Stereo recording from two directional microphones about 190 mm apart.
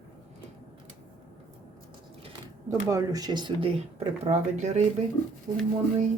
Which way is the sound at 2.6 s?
15° right (ahead or behind).